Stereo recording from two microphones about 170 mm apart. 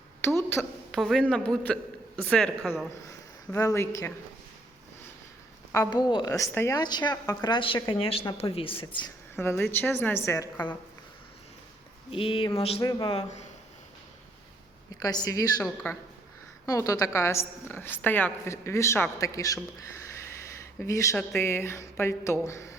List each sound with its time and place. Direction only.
0.5 s a woman's voice: 5° left (ahead or behind)
3.5 s a woman's voice: 15° left (ahead or behind)
5.7 s a woman's voice: 20° left (ahead or behind)
9.3 s a woman's voice: 15° left (ahead or behind)
12.1 s speech: 30° left (ahead or behind)
12.8 s a woman's voice: 25° left (ahead or behind)
13.1 s speech: 40° left (ahead or behind)
14.9 s a woman's voice: 20° left (ahead or behind)
20.7 s a woman's voice: 20° left (ahead or behind)